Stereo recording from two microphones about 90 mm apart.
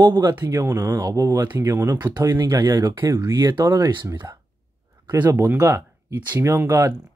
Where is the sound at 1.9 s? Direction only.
55° right (ahead or behind).